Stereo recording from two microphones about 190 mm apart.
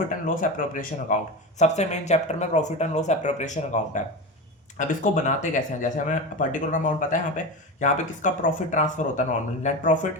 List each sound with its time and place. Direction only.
0.1 s speech: 45° left (ahead or behind)